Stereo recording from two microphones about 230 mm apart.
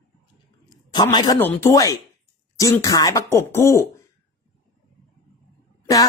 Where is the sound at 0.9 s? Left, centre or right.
Centre.